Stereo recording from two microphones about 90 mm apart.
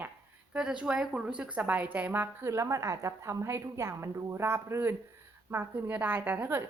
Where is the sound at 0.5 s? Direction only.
10° right (ahead or behind).